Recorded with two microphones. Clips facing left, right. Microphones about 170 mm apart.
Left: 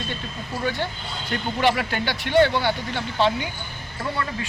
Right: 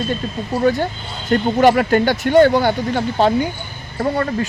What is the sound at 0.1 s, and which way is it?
Speech, 45° right (ahead or behind).